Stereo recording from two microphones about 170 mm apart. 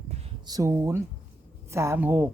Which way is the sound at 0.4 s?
20° right (ahead or behind).